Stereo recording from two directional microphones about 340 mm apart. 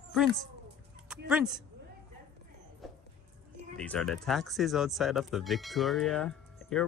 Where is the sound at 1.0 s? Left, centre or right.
Centre.